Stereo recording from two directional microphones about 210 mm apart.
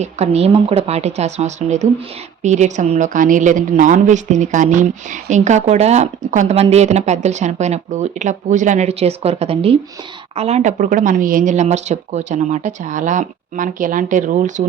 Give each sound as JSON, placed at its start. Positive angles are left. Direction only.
{"t": 0.0, "sound": "a woman's voice", "side_deg": -30}